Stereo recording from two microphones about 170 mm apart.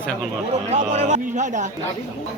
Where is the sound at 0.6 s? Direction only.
40° right (ahead or behind).